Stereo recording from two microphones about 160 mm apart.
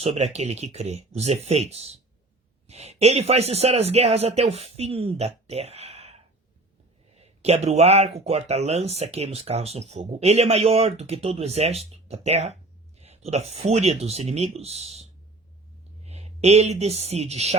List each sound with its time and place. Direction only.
0.0 s speech: 40° right (ahead or behind)
16.0 s speech: 40° right (ahead or behind)